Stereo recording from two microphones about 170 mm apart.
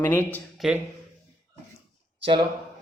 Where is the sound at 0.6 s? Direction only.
5° right (ahead or behind).